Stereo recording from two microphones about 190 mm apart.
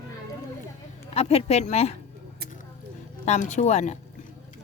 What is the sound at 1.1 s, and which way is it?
Speech, 35° left (ahead or behind).